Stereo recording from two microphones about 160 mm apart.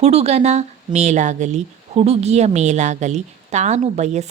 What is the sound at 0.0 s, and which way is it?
A woman's voice, 40° right (ahead or behind).